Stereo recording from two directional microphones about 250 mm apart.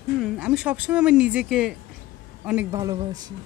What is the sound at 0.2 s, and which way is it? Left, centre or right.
Speech, centre.